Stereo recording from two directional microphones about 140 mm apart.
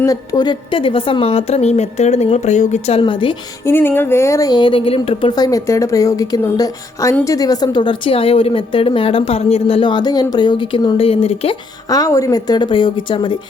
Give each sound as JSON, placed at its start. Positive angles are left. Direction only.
{"t": 0.0, "sound": "a woman's voice", "side_deg": 25}
{"t": 3.0, "sound": "a woman's voice", "side_deg": 35}
{"t": 3.7, "sound": "speech", "side_deg": 15}
{"t": 5.3, "sound": "a woman's voice", "side_deg": 25}
{"t": 11.9, "sound": "a woman's voice", "side_deg": 25}